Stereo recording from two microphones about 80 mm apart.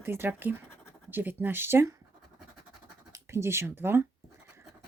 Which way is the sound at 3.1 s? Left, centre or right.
Right.